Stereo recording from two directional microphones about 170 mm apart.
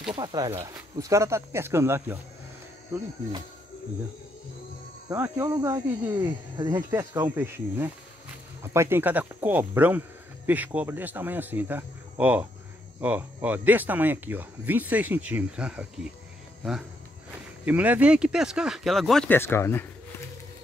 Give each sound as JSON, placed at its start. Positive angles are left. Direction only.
{"t": 0.1, "sound": "speech", "side_deg": -25}
{"t": 5.1, "sound": "speech", "side_deg": -15}
{"t": 17.6, "sound": "speech", "side_deg": -10}